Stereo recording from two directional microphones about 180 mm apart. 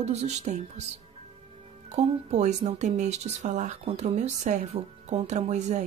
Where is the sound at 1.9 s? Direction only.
40° right (ahead or behind).